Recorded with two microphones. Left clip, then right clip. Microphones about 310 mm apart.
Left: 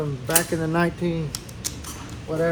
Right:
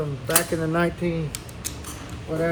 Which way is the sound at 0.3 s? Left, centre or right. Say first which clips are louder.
Even; centre.